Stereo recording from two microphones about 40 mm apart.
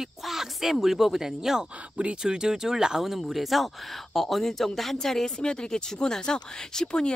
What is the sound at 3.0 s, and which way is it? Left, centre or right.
Speech, centre.